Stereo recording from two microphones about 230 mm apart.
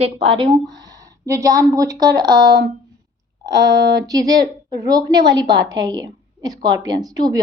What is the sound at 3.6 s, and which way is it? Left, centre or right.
A woman's voice, centre.